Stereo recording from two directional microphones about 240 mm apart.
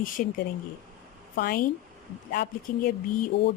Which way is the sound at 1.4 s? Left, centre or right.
Left.